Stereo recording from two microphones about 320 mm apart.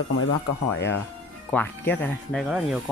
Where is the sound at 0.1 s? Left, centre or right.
Left.